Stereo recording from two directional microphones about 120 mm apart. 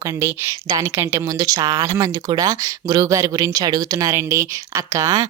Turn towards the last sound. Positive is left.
turn(degrees=-30)  # may be behind; listen again after turning